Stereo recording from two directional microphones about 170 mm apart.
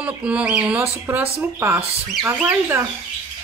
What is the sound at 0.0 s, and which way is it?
Speech, 5° right (ahead or behind).